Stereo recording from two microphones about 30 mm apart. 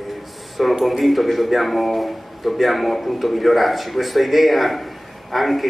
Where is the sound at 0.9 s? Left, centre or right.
Centre.